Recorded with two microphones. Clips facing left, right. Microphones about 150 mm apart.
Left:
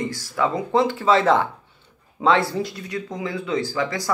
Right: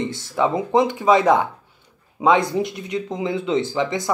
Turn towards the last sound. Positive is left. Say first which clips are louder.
# right 3 dB
turn(degrees=-20)  # may be behind; listen again after turning